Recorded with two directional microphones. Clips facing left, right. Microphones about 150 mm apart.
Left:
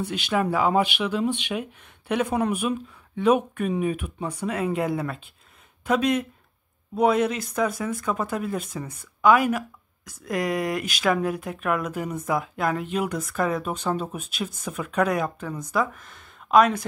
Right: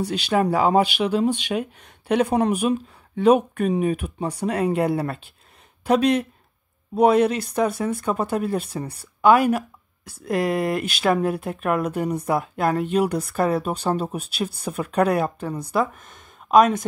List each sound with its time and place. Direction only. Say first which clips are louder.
0.0 s speech: right 4 dB; 35° right (ahead or behind)
7.2 s speech: right 4 dB; 30° right (ahead or behind)